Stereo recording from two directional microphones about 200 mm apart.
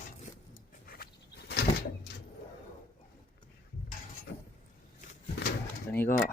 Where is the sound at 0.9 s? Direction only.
50° left (ahead or behind).